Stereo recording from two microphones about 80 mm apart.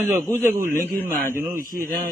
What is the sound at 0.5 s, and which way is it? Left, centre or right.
Speech, right.